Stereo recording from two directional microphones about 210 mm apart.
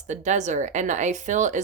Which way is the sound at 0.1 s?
35° right (ahead or behind).